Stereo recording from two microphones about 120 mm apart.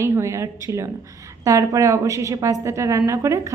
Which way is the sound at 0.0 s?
25° right (ahead or behind).